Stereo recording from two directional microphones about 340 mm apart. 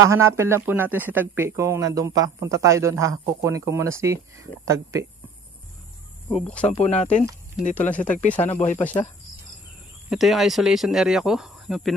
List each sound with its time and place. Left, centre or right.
0.0 s speech: centre
6.3 s speech: centre
6.7 s speech: centre
8.8 s speech: centre